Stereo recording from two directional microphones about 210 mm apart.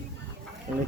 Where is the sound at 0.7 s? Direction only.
35° right (ahead or behind).